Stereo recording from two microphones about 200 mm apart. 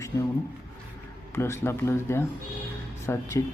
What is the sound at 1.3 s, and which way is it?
Speech, 15° left (ahead or behind).